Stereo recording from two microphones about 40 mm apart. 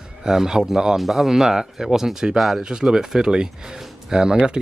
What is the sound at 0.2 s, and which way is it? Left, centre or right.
Speech, centre.